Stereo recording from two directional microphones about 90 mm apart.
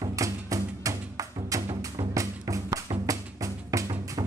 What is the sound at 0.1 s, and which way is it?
Music, 40° right (ahead or behind).